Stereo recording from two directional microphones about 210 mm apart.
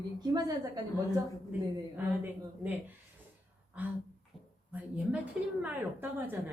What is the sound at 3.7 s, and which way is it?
A woman's voice, 5° right (ahead or behind).